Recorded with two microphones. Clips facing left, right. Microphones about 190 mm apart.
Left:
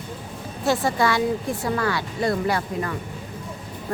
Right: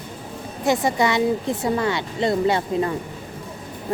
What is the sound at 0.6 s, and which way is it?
Speech, 15° right (ahead or behind).